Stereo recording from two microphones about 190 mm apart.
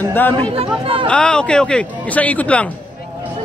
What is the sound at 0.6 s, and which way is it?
Speech, 30° right (ahead or behind).